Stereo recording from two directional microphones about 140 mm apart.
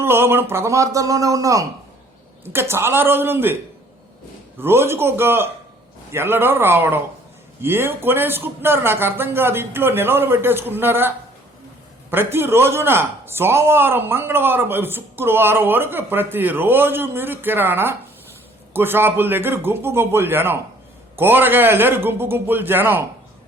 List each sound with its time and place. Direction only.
0.0 s a man's voice: 15° right (ahead or behind)
4.6 s a man's voice: 15° right (ahead or behind)
12.1 s a man's voice: 15° right (ahead or behind)